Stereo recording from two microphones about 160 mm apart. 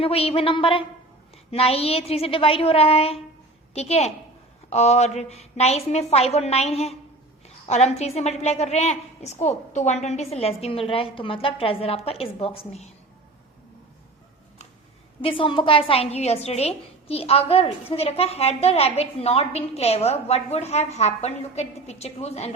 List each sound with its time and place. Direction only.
0.0 s a woman's voice: 35° left (ahead or behind)
15.2 s a woman's voice: 35° left (ahead or behind)